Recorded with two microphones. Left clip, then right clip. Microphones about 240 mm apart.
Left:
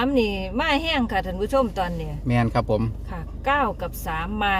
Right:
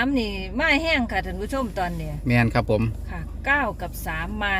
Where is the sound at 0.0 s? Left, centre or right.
Left.